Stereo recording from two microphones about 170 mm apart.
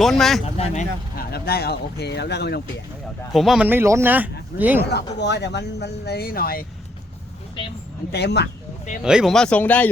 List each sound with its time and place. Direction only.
0.0 s speech: centre (ahead or behind)
0.4 s speech: 40° left (ahead or behind)
1.1 s speech: 65° left (ahead or behind)
3.3 s speech: centre (ahead or behind)
4.9 s speech: 85° left; by 6.7 s 60° left (ahead or behind)
8.1 s speech: 75° left (ahead or behind)
9.0 s speech: 5° right (ahead or behind)